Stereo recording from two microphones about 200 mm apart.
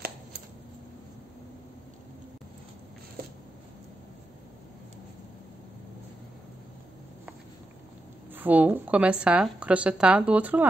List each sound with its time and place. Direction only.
8.4 s speech: 10° right (ahead or behind)